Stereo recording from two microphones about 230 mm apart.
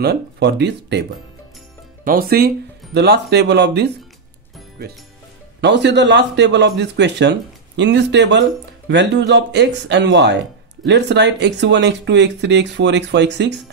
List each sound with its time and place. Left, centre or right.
0.0 s speech: right
2.0 s speech: right
5.6 s speech: right